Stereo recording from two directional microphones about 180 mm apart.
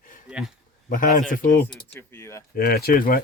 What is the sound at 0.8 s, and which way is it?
Speech, 50° left (ahead or behind).